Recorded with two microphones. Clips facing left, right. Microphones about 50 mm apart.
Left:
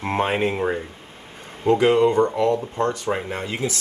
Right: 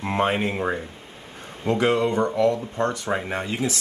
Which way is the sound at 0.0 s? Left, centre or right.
Left.